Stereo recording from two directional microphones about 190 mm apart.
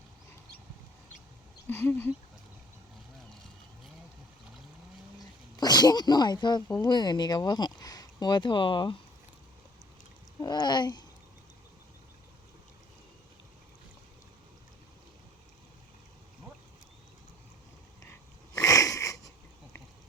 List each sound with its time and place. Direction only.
1.6 s speech: 10° left (ahead or behind)
5.5 s speech: 20° left (ahead or behind)
10.4 s speech: 20° left (ahead or behind)
18.0 s wheeze: 15° left (ahead or behind)